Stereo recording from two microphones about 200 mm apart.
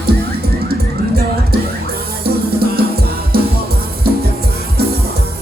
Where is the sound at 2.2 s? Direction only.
50° right (ahead or behind).